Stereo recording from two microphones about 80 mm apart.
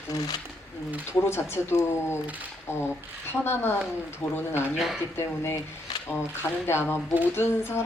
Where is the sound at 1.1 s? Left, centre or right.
Left.